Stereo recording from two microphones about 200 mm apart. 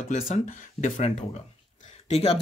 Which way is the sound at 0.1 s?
40° left (ahead or behind).